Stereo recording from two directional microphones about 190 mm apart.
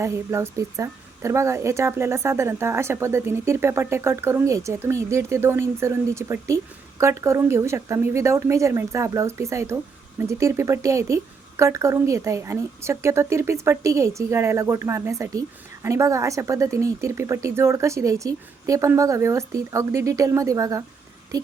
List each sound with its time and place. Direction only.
0.0 s a woman's voice: 15° right (ahead or behind)